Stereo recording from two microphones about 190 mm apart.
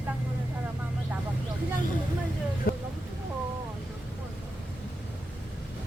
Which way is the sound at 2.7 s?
50° left (ahead or behind).